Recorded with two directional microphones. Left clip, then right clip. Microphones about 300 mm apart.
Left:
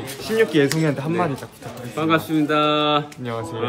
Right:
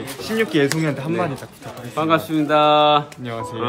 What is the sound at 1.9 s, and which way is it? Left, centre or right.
Speech, centre.